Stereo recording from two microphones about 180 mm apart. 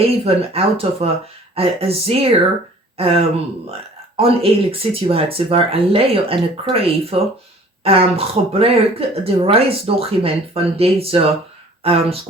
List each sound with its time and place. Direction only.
0.0 s speech: 35° right (ahead or behind)